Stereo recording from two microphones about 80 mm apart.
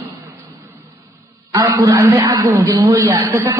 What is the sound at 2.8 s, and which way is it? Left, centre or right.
Speech, right.